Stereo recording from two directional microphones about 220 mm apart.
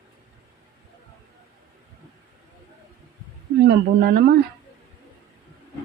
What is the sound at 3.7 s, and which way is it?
Speech, 45° right (ahead or behind).